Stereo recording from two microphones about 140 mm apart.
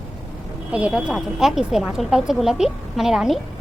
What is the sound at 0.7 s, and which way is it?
A woman's voice, 5° right (ahead or behind).